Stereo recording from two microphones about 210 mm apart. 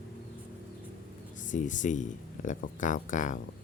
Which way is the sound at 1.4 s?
35° left (ahead or behind).